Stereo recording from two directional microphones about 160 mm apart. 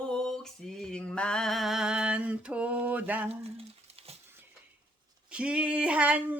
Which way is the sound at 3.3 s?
40° right (ahead or behind).